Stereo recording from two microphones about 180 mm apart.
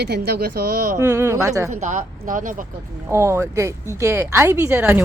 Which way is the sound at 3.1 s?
15° right (ahead or behind).